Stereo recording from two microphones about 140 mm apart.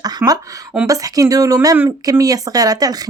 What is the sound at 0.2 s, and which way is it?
Speech, 15° right (ahead or behind).